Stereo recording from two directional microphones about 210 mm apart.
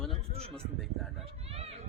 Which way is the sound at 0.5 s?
Centre (ahead or behind).